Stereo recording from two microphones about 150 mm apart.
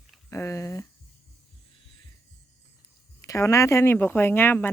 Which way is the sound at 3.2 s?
20° left (ahead or behind).